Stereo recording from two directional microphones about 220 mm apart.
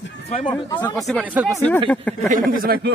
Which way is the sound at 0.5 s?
20° left (ahead or behind).